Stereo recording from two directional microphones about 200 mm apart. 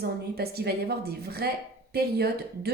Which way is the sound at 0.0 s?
50° right (ahead or behind).